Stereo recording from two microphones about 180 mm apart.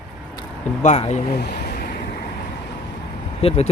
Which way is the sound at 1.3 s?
55° left (ahead or behind).